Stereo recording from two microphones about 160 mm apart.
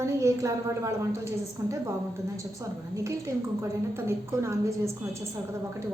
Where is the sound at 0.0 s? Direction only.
20° right (ahead or behind).